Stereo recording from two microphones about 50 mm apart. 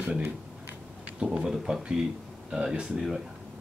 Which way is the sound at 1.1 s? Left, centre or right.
Right.